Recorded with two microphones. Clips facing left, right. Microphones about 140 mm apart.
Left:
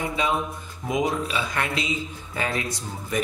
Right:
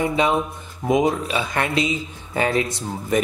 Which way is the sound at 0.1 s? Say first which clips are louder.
Right 5 dB; 25° right (ahead or behind).